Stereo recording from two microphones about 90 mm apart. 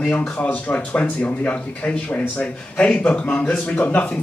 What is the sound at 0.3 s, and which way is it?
A man's voice, 15° left (ahead or behind).